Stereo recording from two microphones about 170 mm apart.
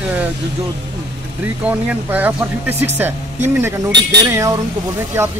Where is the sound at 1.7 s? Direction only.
10° right (ahead or behind).